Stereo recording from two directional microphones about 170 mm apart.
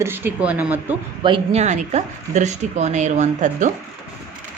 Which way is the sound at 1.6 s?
45° right (ahead or behind).